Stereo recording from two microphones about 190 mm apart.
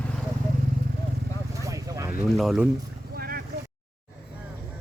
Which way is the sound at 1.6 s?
15° right (ahead or behind).